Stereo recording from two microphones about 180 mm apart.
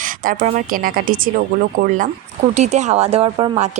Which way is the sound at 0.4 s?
45° right (ahead or behind).